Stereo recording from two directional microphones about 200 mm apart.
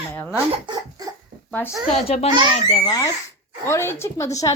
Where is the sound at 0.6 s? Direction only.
20° right (ahead or behind).